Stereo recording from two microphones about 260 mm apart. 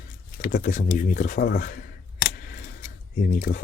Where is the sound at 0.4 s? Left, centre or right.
Left.